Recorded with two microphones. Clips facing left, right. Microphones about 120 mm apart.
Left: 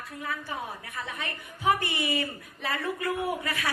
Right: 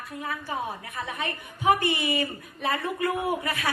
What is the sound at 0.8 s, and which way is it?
A woman's voice, 25° right (ahead or behind).